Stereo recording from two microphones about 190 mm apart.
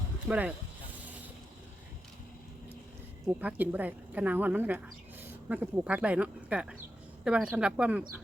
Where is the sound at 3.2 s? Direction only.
10° right (ahead or behind).